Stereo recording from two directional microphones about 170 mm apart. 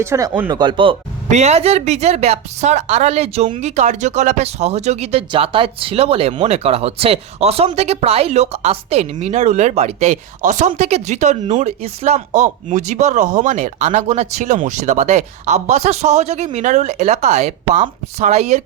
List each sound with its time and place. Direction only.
0.0 s speech: 15° right (ahead or behind)
0.6 s speech: 30° right (ahead or behind)
1.3 s a woman's voice: 40° right (ahead or behind)